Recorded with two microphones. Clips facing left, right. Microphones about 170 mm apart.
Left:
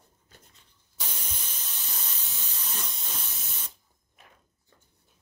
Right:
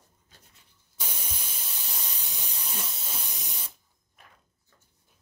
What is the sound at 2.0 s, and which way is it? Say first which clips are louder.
Steam: right 1 dB; 15° right (ahead or behind).